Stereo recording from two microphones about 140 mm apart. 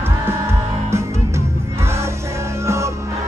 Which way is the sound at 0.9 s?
20° right (ahead or behind).